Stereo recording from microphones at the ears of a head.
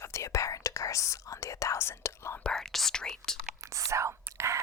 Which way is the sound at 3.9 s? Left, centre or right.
Right.